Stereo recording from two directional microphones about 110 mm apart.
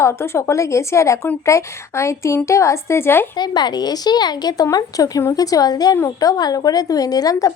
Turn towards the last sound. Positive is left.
turn(degrees=30)  # may be behind; listen again after turning